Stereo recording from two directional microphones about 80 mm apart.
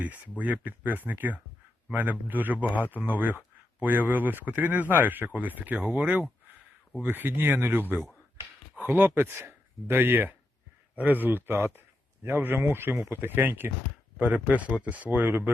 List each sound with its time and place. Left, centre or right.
0.0 s speech: centre